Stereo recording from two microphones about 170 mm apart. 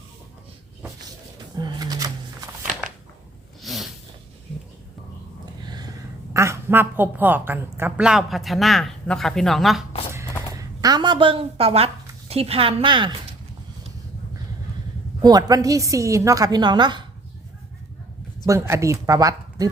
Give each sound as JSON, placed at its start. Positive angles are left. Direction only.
{"t": 1.5, "sound": "a sound", "side_deg": -25}
{"t": 3.6, "sound": "snort", "side_deg": 0}
{"t": 5.6, "sound": "a sound", "side_deg": -25}
{"t": 6.3, "sound": "a woman's voice", "side_deg": -15}
{"t": 10.5, "sound": "a woman's voice", "side_deg": -20}
{"t": 15.2, "sound": "a woman's voice", "side_deg": -20}
{"t": 18.4, "sound": "a woman's voice", "side_deg": -15}